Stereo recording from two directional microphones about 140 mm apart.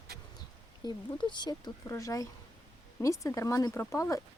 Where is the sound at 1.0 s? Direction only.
30° left (ahead or behind).